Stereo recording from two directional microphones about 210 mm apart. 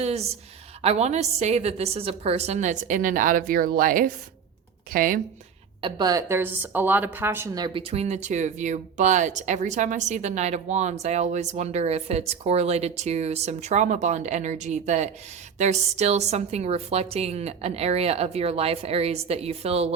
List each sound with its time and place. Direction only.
0.0 s a woman's voice: 30° right (ahead or behind)
5.8 s a woman's voice: 20° right (ahead or behind)